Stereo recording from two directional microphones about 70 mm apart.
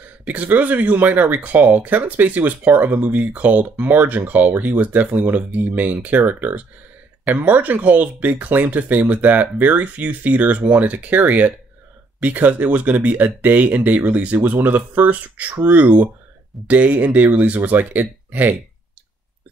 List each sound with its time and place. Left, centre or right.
0.2 s speech: right